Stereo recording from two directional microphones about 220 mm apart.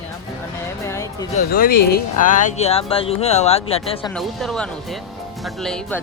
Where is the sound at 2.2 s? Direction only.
35° left (ahead or behind).